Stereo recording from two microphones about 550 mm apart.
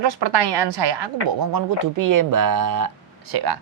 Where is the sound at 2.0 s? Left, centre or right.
Right.